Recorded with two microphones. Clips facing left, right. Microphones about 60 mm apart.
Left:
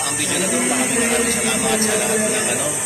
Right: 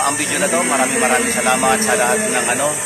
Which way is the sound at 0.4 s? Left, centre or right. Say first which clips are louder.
Right 4 dB; centre.